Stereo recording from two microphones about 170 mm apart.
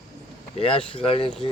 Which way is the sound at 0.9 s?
30° left (ahead or behind).